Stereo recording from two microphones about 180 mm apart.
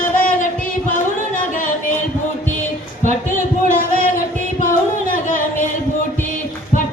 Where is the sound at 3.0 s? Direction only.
45° left (ahead or behind).